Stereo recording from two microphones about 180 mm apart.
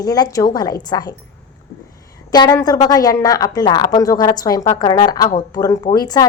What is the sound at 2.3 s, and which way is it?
A woman's voice, 20° left (ahead or behind).